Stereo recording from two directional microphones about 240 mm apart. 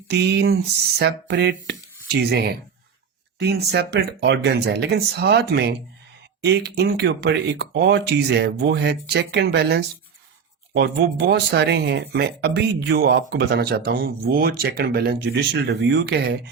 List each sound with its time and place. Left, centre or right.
0.1 s speech: right
11.3 s speech: right